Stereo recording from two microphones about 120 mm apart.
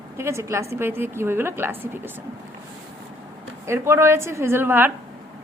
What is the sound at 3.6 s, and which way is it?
A woman's voice, 20° right (ahead or behind).